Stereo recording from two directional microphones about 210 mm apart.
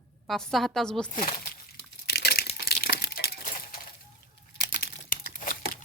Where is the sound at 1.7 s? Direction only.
50° left (ahead or behind).